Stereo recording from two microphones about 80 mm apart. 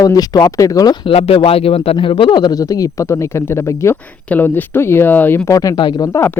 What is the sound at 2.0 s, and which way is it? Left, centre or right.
Speech, left.